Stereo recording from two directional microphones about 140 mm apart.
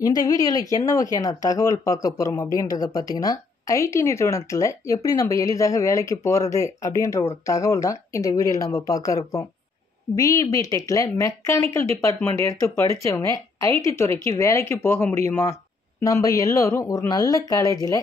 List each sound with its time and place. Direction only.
0.0 s speech: 25° left (ahead or behind)